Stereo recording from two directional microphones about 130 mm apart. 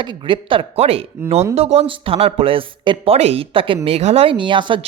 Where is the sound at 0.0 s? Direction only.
40° right (ahead or behind).